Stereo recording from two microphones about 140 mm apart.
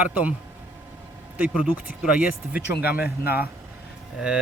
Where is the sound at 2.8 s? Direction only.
90° left.